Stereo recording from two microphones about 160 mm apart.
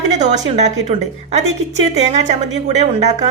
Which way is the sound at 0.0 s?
45° right (ahead or behind).